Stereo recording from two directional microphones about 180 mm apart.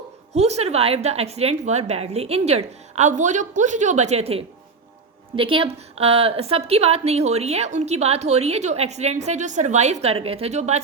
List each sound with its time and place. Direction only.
0.3 s a woman's voice: 35° right (ahead or behind)